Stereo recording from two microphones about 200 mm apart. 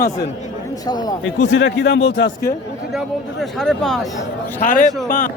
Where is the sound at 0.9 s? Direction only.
20° left (ahead or behind).